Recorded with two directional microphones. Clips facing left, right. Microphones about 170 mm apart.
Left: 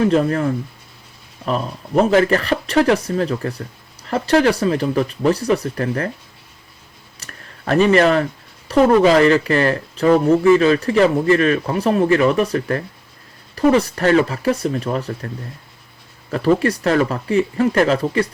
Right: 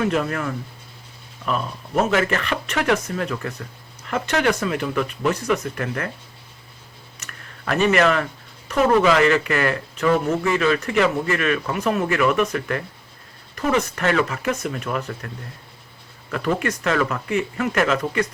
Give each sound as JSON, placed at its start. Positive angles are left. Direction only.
{"t": 0.0, "sound": "speech", "side_deg": 30}
{"t": 7.2, "sound": "speech", "side_deg": 35}
{"t": 16.3, "sound": "speech", "side_deg": 35}